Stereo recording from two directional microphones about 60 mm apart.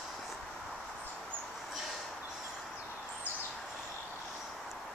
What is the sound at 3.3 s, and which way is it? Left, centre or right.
Bird, right.